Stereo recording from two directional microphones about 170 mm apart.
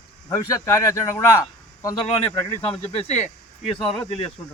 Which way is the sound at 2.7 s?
35° left (ahead or behind).